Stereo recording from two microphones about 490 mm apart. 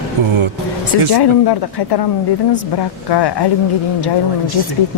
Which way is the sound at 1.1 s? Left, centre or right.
Left.